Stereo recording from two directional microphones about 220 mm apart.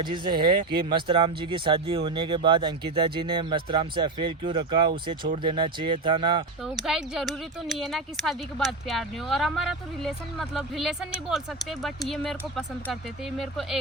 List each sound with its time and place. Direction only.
0.0 s speech: 20° right (ahead or behind)
6.8 s speech: centre (ahead or behind)